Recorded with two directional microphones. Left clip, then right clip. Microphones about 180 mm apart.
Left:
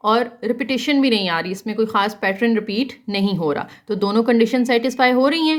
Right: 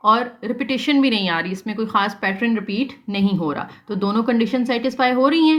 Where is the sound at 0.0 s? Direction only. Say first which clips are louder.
Right 1 dB; 40° left (ahead or behind).